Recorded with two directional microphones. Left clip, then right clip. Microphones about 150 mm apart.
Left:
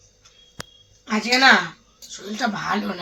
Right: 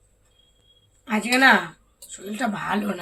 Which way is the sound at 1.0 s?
25° right (ahead or behind).